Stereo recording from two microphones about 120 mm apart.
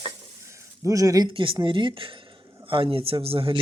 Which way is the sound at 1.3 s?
45° right (ahead or behind).